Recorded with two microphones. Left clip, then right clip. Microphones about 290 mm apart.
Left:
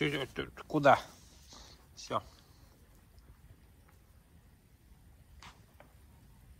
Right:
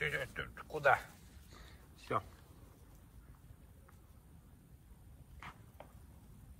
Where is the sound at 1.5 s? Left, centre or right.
Centre.